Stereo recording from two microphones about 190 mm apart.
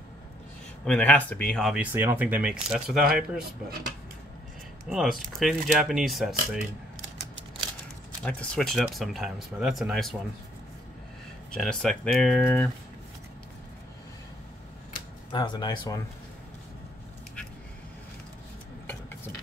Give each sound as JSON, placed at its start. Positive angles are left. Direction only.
{"t": 0.8, "sound": "speech", "side_deg": 5}
{"t": 4.8, "sound": "speech", "side_deg": 0}
{"t": 8.3, "sound": "speech", "side_deg": 5}
{"t": 11.5, "sound": "speech", "side_deg": 5}
{"t": 15.3, "sound": "speech", "side_deg": 25}